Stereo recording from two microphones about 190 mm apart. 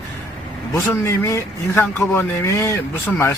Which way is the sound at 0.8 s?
15° left (ahead or behind).